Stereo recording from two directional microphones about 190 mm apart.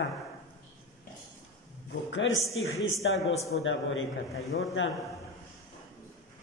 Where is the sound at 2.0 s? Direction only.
75° left (ahead or behind).